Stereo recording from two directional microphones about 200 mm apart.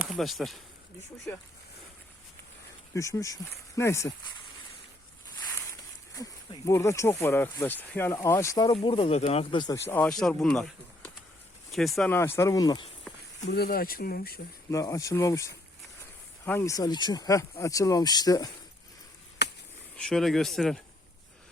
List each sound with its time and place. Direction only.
0.0 s speech: centre (ahead or behind)
2.9 s speech: 15° left (ahead or behind)
6.1 s speech: 15° left (ahead or behind)
13.4 s speech: 55° left (ahead or behind)
14.7 s speech: 15° left (ahead or behind)
19.4 s chop: 55° left (ahead or behind)
20.0 s speech: centre (ahead or behind)